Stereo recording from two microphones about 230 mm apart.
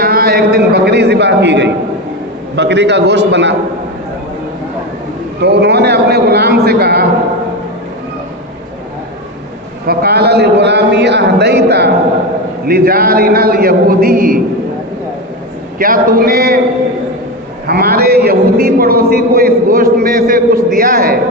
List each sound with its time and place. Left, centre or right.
0.0 s a man's voice: right
5.4 s a man's voice: right
9.8 s a man's voice: right
15.8 s a man's voice: right
17.7 s a man's voice: right